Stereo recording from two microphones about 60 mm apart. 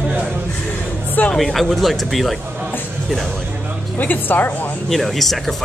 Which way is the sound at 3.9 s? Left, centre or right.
Left.